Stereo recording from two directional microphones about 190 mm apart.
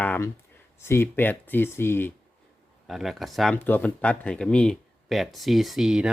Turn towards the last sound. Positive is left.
turn(degrees=-5)  # may be behind; listen again after turning